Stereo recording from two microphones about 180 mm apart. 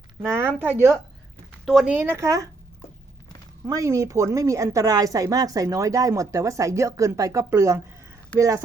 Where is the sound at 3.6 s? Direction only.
15° right (ahead or behind).